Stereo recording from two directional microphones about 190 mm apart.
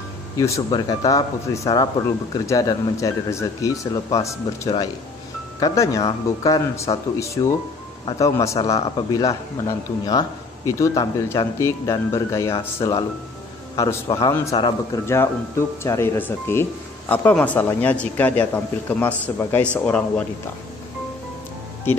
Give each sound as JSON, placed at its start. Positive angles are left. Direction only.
{"t": 0.4, "sound": "a man's voice", "side_deg": 20}
{"t": 12.5, "sound": "a man's voice", "side_deg": 25}